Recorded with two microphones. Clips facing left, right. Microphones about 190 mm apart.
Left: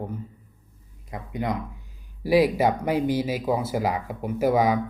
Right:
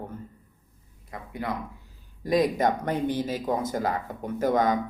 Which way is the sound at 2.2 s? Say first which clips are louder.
Left 3 dB; 10° left (ahead or behind).